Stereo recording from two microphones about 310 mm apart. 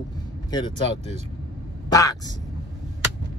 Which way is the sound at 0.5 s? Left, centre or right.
Centre.